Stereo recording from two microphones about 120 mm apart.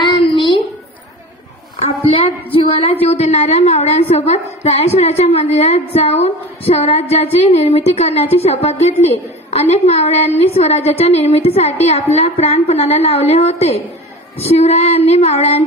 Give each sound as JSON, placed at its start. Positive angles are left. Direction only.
{"t": 2.1, "sound": "a woman's voice", "side_deg": 50}